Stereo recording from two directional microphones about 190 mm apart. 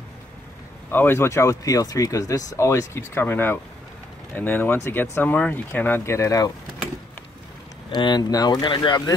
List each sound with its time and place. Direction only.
0.9 s speech: 10° left (ahead or behind)
7.9 s speech: 20° left (ahead or behind)